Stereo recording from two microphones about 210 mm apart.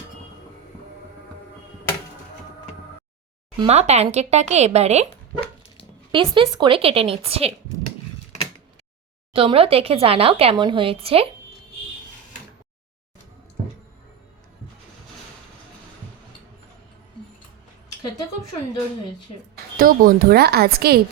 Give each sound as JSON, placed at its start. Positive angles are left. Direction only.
{"t": 3.6, "sound": "speech", "side_deg": -30}
{"t": 6.1, "sound": "speech", "side_deg": -25}
{"t": 9.3, "sound": "speech", "side_deg": -25}
{"t": 19.8, "sound": "a woman's voice", "side_deg": -45}